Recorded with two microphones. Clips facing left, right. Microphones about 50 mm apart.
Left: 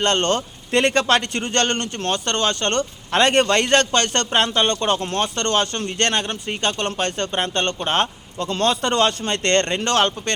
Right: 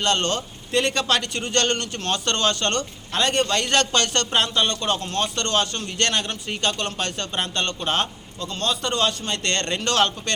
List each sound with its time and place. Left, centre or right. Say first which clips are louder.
0.0 s a man's voice: left 3 dB; left
3.1 s a man's voice: left 5 dB; left
8.4 s a man's voice: left 6 dB; left